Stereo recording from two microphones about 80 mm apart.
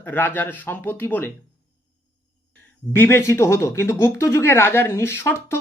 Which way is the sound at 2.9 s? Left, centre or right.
Left.